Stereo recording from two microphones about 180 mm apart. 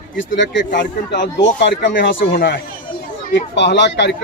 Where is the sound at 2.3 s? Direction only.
55° left (ahead or behind).